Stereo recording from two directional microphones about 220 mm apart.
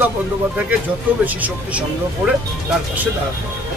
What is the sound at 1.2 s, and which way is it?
Speech, 5° right (ahead or behind).